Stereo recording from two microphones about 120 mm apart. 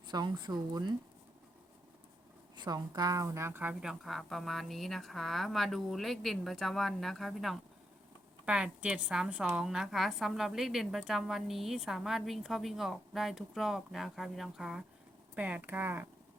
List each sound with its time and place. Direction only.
0.1 s speech: 35° right (ahead or behind)
2.6 s a woman's voice: 35° right (ahead or behind); by 7.6 s centre (ahead or behind)
8.4 s a woman's voice: 10° right (ahead or behind)